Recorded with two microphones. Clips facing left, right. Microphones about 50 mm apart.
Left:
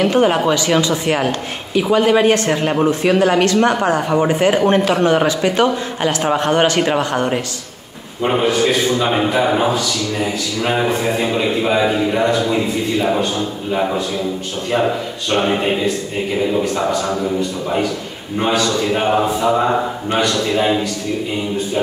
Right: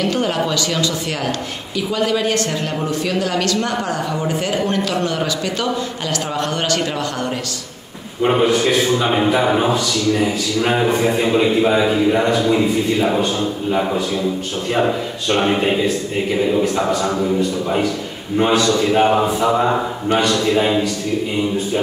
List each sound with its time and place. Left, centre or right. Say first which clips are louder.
0.0 s speech: left 5 dB; left
8.2 s a man's voice: right 1 dB; centre
15.2 s speech: even; centre
18.4 s a man's voice: right 1 dB; centre